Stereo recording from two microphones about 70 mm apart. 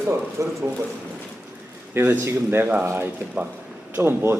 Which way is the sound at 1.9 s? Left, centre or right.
Right.